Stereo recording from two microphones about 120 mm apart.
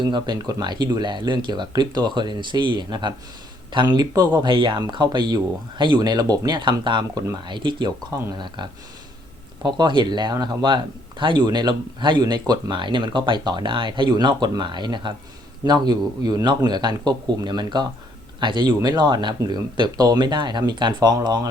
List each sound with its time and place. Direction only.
0.0 s speech: 40° right (ahead or behind)
9.6 s speech: 40° right (ahead or behind)